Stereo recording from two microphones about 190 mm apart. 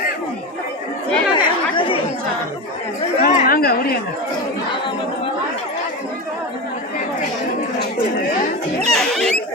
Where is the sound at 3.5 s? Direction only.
50° left (ahead or behind).